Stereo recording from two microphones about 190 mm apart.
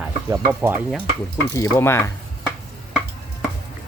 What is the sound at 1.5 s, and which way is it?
Speech, 15° left (ahead or behind).